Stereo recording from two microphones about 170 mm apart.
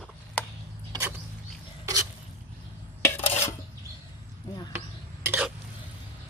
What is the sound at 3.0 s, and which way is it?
Dishes, 15° left (ahead or behind).